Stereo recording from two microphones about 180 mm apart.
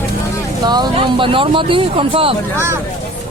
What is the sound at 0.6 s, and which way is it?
Speech, 25° right (ahead or behind).